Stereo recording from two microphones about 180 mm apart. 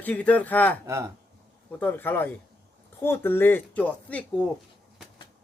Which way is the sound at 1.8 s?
10° left (ahead or behind).